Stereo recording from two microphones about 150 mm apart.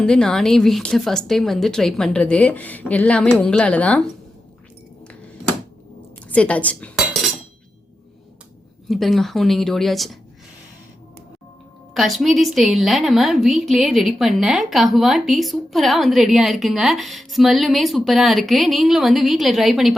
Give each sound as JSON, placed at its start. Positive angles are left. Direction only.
{"t": 0.0, "sound": "a woman's voice", "side_deg": 5}
{"t": 6.2, "sound": "a woman's voice", "side_deg": 10}
{"t": 8.9, "sound": "a woman's voice", "side_deg": 0}
{"t": 11.9, "sound": "a woman's voice", "side_deg": 0}